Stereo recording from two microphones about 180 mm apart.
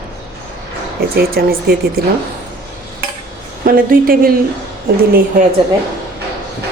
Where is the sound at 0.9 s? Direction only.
60° right (ahead or behind).